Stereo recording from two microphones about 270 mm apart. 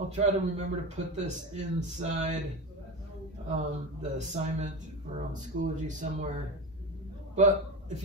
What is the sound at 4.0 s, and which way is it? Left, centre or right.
A man's voice, right.